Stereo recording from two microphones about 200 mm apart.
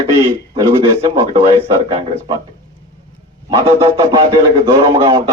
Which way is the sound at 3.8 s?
20° right (ahead or behind).